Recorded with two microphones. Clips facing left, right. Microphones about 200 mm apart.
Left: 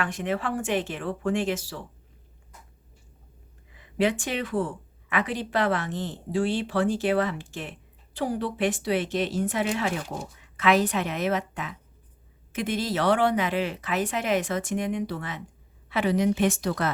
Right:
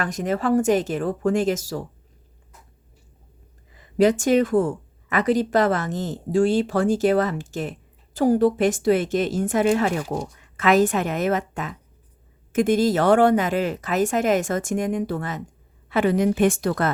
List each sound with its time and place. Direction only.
0.0 s speech: 40° right (ahead or behind)
3.7 s speech: 40° right (ahead or behind)